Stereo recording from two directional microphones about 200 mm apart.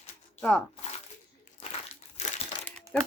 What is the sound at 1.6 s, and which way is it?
Crumpling, 30° left (ahead or behind).